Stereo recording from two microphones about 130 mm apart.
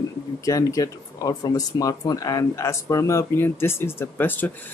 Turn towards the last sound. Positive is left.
turn(degrees=15)  # may be behind; listen again after turning